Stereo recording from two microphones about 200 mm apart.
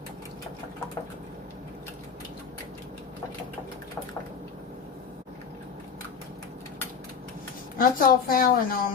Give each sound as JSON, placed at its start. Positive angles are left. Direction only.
{"t": 7.8, "sound": "a woman's voice", "side_deg": 45}